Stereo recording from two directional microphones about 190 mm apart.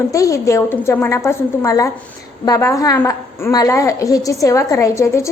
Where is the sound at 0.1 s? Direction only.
15° left (ahead or behind).